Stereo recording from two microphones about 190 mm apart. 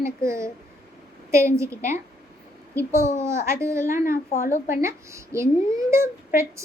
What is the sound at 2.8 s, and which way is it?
Speech, 15° right (ahead or behind).